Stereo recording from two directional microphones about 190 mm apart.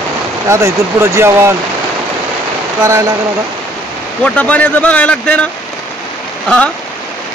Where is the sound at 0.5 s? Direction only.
15° right (ahead or behind).